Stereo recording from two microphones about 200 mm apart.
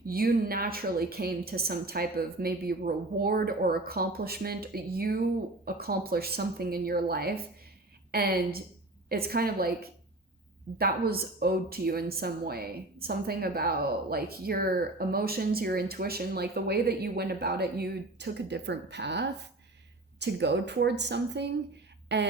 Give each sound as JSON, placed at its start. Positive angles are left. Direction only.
{"t": 0.0, "sound": "speech", "side_deg": -50}
{"t": 10.8, "sound": "a woman's voice", "side_deg": -50}